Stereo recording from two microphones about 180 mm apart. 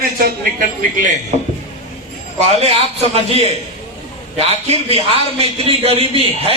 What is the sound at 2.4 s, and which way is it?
A man's voice, 35° right (ahead or behind).